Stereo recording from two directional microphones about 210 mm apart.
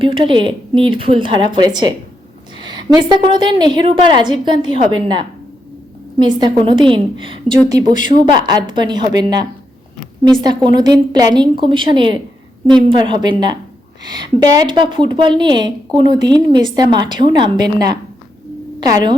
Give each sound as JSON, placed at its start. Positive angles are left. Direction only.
{"t": 0.0, "sound": "a woman's voice", "side_deg": -25}